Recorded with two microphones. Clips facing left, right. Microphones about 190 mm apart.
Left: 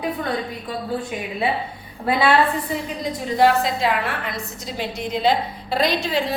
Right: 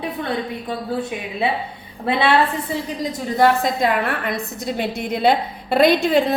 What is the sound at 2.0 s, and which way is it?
Speech, 25° right (ahead or behind).